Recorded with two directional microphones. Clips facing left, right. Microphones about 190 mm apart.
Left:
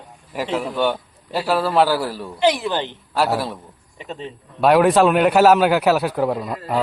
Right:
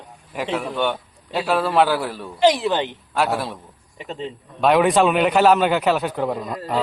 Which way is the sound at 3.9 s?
15° right (ahead or behind).